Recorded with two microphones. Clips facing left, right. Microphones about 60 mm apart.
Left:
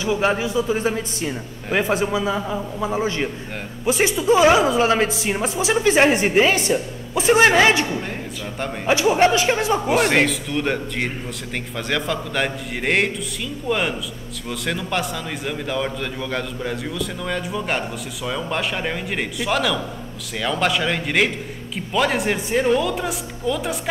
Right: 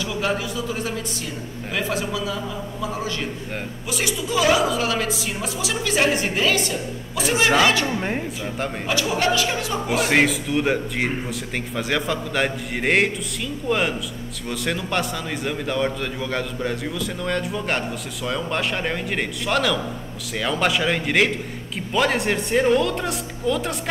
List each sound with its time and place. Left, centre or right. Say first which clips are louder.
0.0 s a woman's voice: left 4 dB; left
8.8 s a woman's voice: left 7 dB; left
9.9 s a man's voice: right 2 dB; centre